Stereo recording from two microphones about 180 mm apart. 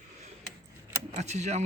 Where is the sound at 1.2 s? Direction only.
40° right (ahead or behind).